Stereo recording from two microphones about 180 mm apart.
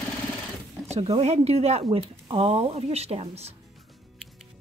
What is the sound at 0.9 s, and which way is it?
Speech, 35° right (ahead or behind).